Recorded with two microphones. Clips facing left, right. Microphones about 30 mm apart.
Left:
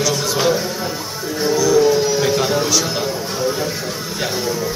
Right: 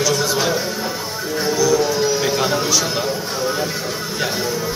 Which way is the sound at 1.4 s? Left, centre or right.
Centre.